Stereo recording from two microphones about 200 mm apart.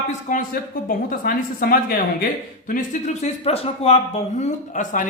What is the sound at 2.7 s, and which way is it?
Speech, 35° left (ahead or behind).